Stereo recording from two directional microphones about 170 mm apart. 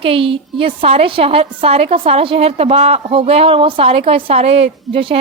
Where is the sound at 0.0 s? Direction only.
35° right (ahead or behind).